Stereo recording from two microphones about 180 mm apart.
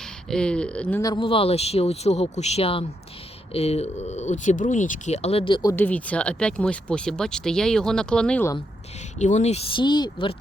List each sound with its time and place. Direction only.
0.3 s speech: 5° left (ahead or behind)
1.0 s speech: 25° left (ahead or behind)
5.7 s speech: 10° left (ahead or behind)
9.1 s speech: 40° left (ahead or behind)